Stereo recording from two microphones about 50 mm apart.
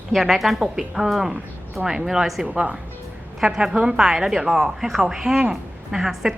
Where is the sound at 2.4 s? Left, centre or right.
Centre.